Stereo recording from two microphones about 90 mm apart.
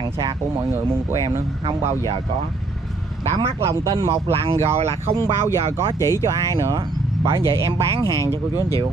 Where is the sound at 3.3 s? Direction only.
35° right (ahead or behind).